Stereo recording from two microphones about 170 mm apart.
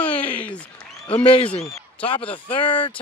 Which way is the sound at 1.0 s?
30° left (ahead or behind).